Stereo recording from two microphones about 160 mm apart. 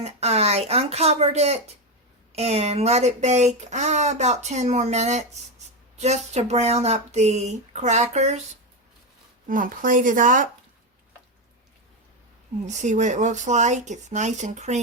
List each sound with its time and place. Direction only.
0.0 s speech: 40° right (ahead or behind)
9.5 s speech: 55° right (ahead or behind)
12.6 s speech: 50° right (ahead or behind)